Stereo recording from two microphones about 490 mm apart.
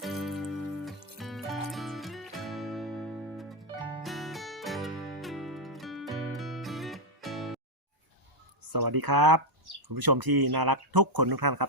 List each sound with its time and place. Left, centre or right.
0.0 s music: centre
8.7 s speech: right